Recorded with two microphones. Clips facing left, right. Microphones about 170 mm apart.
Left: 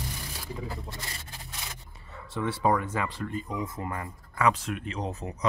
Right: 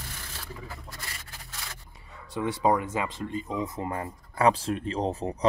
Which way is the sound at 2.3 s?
20° right (ahead or behind).